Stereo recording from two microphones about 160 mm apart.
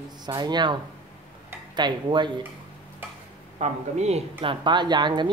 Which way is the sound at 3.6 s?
40° right (ahead or behind).